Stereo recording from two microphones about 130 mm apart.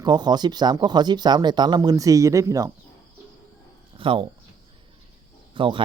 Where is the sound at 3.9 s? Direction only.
40° right (ahead or behind).